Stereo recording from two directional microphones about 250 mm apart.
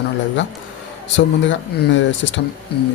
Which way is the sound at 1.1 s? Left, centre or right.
Left.